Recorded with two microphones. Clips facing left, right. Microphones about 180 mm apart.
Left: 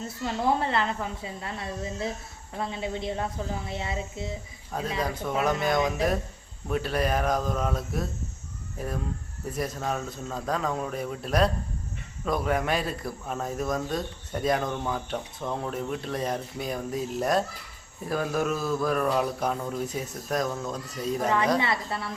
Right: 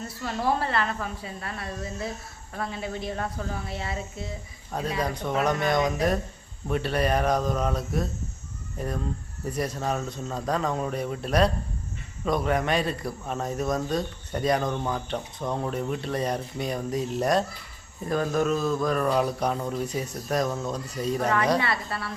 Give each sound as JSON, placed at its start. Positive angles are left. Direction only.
{"t": 0.0, "sound": "speech", "side_deg": 20}
{"t": 4.9, "sound": "speech", "side_deg": 0}
{"t": 21.6, "sound": "speech", "side_deg": 20}